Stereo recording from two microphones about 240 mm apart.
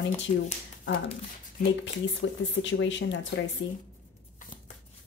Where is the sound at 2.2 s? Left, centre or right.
Left.